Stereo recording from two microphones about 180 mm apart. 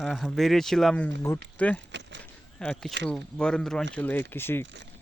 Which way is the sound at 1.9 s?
75° right (ahead or behind).